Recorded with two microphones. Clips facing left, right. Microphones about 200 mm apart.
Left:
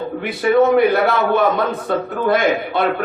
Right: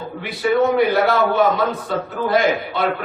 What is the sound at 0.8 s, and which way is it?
A man's voice, 55° left (ahead or behind).